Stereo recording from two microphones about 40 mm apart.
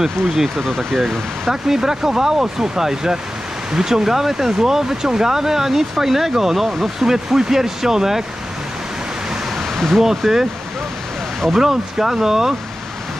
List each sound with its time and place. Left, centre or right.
0.6 s speech: centre
1.5 s speech: centre
9.8 s speech: centre
11.5 s speech: centre